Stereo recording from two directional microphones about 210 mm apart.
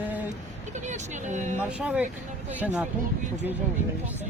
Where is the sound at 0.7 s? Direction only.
35° right (ahead or behind).